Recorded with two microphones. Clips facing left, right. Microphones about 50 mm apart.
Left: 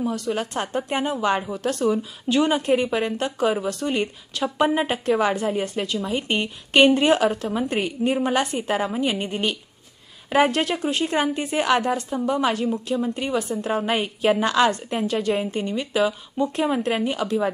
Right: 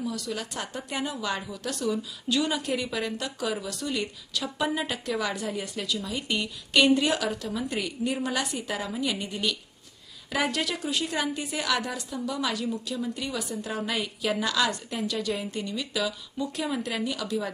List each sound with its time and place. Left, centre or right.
0.0 s a woman's voice: left